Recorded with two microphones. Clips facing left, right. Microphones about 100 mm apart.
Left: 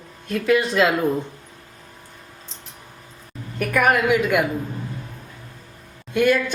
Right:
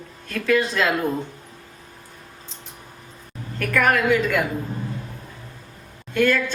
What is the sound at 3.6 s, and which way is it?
Speech, 15° left (ahead or behind).